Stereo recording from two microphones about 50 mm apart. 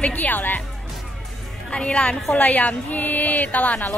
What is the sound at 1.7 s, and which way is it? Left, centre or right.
A woman's voice, left.